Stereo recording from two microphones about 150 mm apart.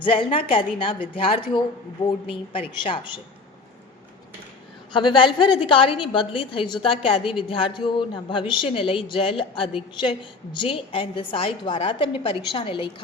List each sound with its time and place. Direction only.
0.0 s a woman's voice: 35° left (ahead or behind)
4.9 s a woman's voice: 30° left (ahead or behind)